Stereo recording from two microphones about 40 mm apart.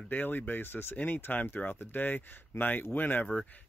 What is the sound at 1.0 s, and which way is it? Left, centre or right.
Speech, left.